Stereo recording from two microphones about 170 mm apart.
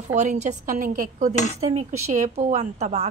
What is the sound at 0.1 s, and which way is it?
Speech, 45° right (ahead or behind).